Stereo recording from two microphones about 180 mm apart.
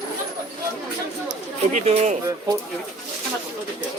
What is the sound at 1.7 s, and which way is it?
Speech, 35° right (ahead or behind).